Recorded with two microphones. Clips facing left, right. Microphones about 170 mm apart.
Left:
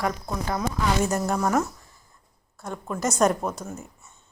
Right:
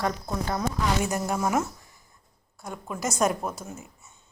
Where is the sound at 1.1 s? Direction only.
10° right (ahead or behind).